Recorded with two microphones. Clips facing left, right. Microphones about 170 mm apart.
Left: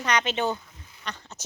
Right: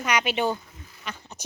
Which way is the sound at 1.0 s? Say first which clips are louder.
Even; 10° right (ahead or behind).